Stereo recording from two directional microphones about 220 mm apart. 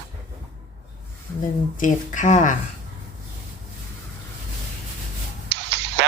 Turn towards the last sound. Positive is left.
turn(degrees=-50)  # may be behind; listen again after turning